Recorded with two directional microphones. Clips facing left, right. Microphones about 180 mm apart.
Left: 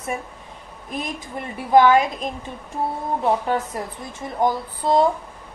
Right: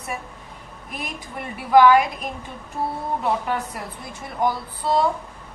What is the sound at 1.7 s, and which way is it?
Speech, 20° left (ahead or behind).